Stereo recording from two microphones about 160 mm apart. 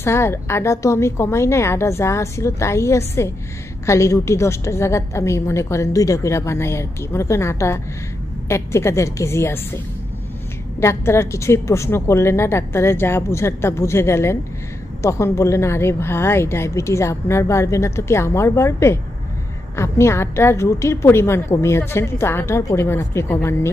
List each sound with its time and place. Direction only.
0.0 s a woman's voice: 15° left (ahead or behind)
10.8 s a woman's voice: 15° left (ahead or behind)